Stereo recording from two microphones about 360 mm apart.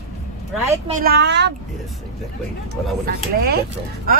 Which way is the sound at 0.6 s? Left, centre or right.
Centre.